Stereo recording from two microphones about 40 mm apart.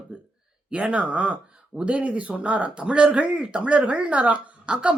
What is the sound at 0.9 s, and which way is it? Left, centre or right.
Speech, right.